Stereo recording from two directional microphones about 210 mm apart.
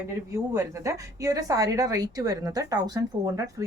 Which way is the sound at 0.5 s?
15° right (ahead or behind).